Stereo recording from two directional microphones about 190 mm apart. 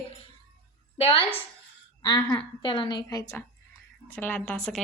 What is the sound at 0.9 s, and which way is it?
A woman's voice, 30° left (ahead or behind).